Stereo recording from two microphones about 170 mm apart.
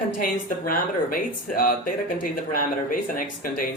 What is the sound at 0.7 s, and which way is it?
Speech, 55° left (ahead or behind).